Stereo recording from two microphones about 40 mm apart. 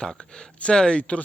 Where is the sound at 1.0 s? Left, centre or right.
Left.